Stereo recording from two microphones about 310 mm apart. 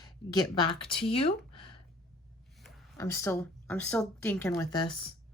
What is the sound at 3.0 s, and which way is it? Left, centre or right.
Speech, centre.